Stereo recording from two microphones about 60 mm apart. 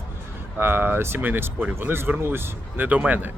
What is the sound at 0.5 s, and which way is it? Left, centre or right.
A man's voice, right.